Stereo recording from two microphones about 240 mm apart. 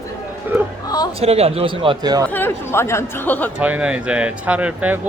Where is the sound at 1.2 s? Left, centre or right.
Right.